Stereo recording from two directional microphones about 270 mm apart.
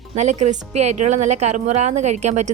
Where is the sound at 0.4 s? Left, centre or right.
Right.